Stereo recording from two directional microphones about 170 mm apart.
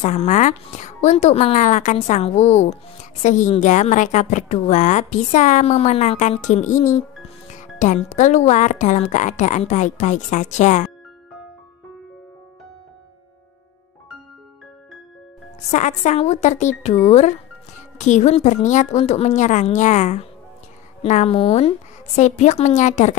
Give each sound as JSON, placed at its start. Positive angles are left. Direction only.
{"t": 0.0, "sound": "speech", "side_deg": 45}
{"t": 15.7, "sound": "a woman's voice", "side_deg": 45}